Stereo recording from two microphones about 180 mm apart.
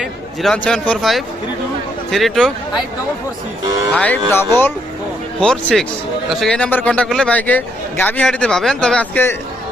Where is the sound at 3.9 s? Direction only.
5° left (ahead or behind).